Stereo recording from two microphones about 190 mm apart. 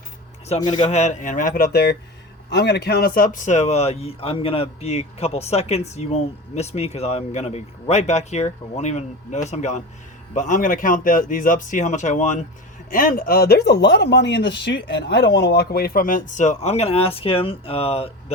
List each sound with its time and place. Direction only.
0.4 s speech: 35° left (ahead or behind)